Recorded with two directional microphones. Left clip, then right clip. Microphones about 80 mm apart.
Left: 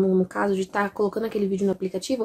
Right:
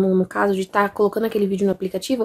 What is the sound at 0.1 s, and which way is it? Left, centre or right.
Speech, right.